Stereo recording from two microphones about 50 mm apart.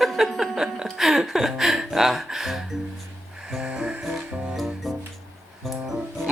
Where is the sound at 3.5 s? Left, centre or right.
Centre.